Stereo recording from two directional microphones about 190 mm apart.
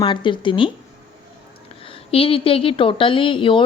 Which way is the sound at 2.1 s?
30° left (ahead or behind).